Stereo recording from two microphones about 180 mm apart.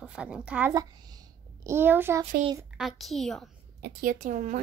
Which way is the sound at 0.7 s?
20° right (ahead or behind).